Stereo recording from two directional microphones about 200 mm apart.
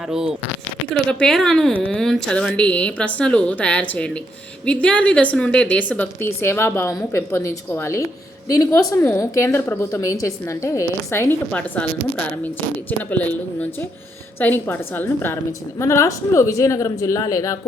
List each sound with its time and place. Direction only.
1.0 s a woman's voice: centre (ahead or behind)